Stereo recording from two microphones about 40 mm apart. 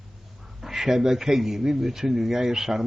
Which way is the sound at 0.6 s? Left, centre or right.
Centre.